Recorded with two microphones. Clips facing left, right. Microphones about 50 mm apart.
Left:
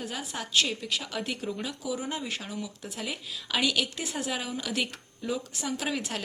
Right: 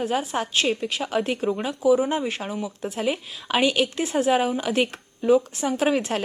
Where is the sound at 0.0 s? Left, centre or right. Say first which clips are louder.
Right 11 dB; right.